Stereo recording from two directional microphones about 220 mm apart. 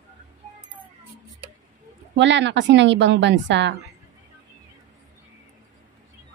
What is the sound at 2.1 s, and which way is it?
Speech, 55° right (ahead or behind).